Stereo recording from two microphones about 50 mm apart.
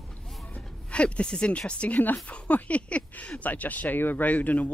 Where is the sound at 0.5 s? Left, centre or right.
Left.